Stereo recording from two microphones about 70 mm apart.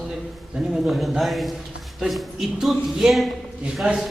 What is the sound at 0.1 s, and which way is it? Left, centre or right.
A man's voice, centre.